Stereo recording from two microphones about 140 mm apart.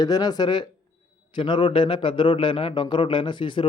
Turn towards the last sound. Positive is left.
turn(degrees=35)  # may be behind; listen again after turning